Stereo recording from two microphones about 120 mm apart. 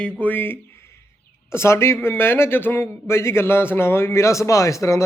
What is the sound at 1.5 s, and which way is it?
A man's voice, 20° left (ahead or behind).